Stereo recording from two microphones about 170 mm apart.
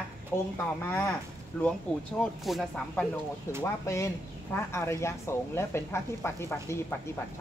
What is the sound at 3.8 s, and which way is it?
Speech, 15° left (ahead or behind).